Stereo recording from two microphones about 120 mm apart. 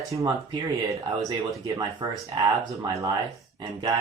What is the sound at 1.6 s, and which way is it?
Speech, 30° right (ahead or behind).